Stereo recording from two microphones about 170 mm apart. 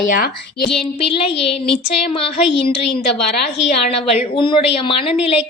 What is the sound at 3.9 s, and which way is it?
A woman's voice, 35° left (ahead or behind).